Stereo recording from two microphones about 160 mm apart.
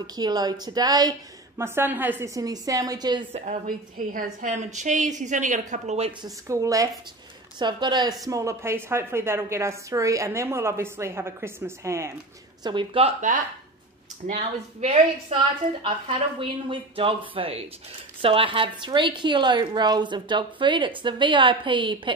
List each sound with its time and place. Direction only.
0.0 s a woman's voice: 25° right (ahead or behind)
1.6 s a woman's voice: 15° right (ahead or behind)
3.3 s a woman's voice: 50° right (ahead or behind)
6.2 s a woman's voice: 20° right (ahead or behind)
12.6 s a woman's voice: 35° right (ahead or behind)
14.2 s a woman's voice: 45° right (ahead or behind)
16.3 s a woman's voice: 35° right (ahead or behind)